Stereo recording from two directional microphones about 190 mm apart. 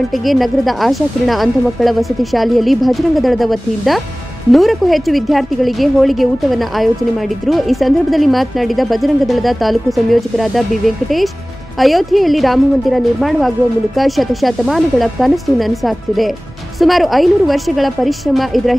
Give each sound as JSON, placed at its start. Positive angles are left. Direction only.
{"t": 0.3, "sound": "speech", "side_deg": 0}